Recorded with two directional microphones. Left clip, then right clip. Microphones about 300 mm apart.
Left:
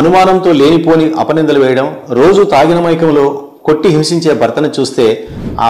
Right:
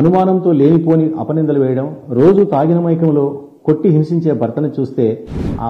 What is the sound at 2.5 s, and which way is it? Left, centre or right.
A man's voice, left.